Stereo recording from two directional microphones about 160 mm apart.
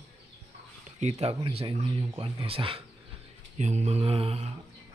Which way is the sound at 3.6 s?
45° right (ahead or behind).